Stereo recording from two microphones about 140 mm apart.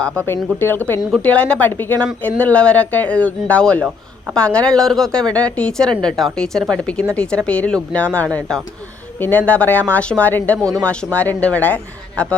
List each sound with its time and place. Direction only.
0.0 s a woman's voice: 15° left (ahead or behind)
10.6 s speech: 25° right (ahead or behind)
10.8 s a woman's voice: 10° left (ahead or behind)